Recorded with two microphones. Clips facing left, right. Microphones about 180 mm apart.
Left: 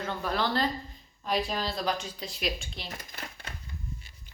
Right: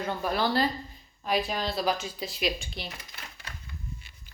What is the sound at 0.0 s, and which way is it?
Speech, 15° right (ahead or behind).